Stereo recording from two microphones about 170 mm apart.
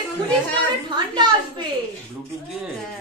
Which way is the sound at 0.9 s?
25° right (ahead or behind).